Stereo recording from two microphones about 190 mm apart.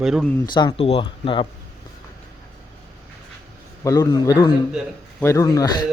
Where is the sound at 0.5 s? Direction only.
25° left (ahead or behind).